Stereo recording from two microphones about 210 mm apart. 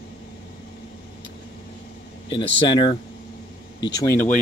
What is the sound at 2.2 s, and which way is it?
Speech, 20° left (ahead or behind).